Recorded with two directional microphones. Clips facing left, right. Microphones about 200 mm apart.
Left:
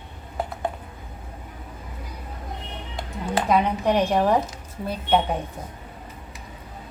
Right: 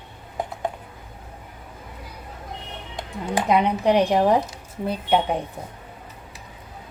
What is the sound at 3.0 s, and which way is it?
A woman's voice, 15° right (ahead or behind).